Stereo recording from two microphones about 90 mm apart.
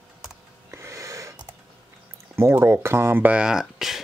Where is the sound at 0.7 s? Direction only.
35° right (ahead or behind).